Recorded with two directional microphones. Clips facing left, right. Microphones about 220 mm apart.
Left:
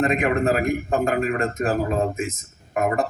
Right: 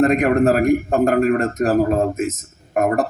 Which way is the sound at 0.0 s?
40° right (ahead or behind).